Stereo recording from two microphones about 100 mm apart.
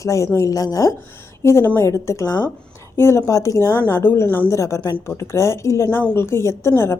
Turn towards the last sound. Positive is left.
turn(degrees=25)  # may be behind; listen again after turning